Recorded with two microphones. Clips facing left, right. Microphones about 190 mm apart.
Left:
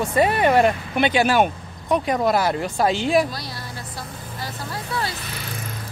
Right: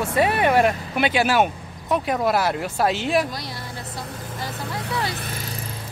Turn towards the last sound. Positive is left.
turn(degrees=-40)  # may be behind; listen again after turning